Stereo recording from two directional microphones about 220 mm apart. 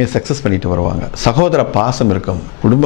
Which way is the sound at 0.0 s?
10° left (ahead or behind).